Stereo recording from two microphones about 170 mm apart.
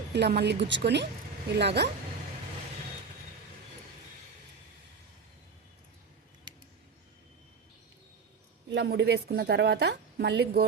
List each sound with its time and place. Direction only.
0.1 s a woman's voice: 75° right (ahead or behind)
8.7 s a woman's voice: 80° right